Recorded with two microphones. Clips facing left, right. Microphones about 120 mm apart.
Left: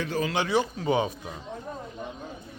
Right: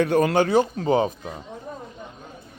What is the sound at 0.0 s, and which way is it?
Speech, 60° right (ahead or behind).